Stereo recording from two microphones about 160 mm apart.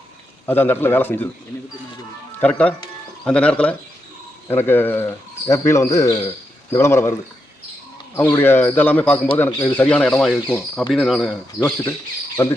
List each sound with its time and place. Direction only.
0.4 s speech: 15° left (ahead or behind)
2.4 s speech: 10° left (ahead or behind)
12.4 s speech: 20° left (ahead or behind)